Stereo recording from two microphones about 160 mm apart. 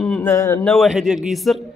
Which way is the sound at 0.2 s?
15° left (ahead or behind).